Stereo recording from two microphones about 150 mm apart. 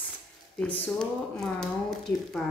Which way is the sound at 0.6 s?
10° left (ahead or behind).